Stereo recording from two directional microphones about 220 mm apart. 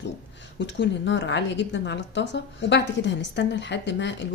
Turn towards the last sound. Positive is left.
turn(degrees=55)  # may be behind; listen again after turning